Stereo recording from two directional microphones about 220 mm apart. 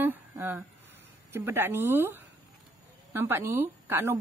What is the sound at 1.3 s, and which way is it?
A woman's voice, 10° right (ahead or behind).